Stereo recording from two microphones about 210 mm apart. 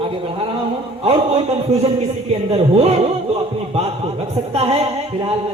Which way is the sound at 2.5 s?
30° right (ahead or behind).